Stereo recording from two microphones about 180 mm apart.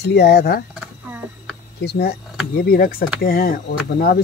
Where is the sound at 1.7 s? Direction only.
65° left (ahead or behind).